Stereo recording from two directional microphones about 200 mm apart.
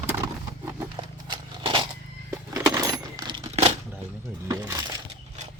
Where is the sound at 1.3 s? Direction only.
25° right (ahead or behind).